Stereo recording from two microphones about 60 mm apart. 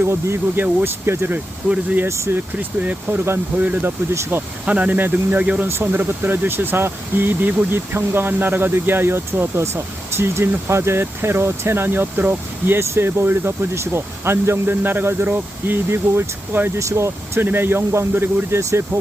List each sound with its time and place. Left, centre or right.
0.0 s speech: right
0.6 s speech: right
2.0 s speech: right
2.3 s speech: right
4.1 s speech: right
4.6 s speech: right
5.4 s speech: right
5.6 s speech: right
16.7 s speech: right
17.4 s speech: right